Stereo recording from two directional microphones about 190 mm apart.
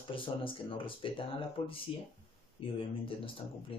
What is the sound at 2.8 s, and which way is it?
Speech, 30° left (ahead or behind).